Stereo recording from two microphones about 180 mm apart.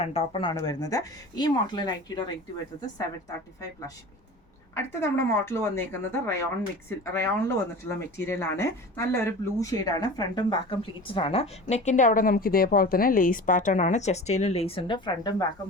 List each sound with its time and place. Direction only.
0.0 s speech: 35° left (ahead or behind)
0.5 s speech: 20° left (ahead or behind)
4.7 s a woman's voice: 15° left (ahead or behind)